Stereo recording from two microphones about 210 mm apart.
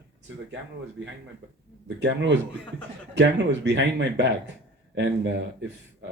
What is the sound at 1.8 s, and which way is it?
Speech, 60° right (ahead or behind).